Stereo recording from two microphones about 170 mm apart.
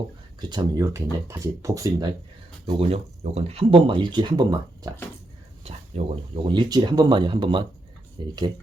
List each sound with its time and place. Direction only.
0.5 s speech: 20° right (ahead or behind)
2.6 s speech: 35° right (ahead or behind)
5.9 s speech: 40° right (ahead or behind)
6.3 s speech: 30° right (ahead or behind)